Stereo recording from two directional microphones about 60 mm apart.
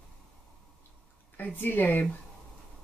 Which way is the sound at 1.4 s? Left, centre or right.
Left.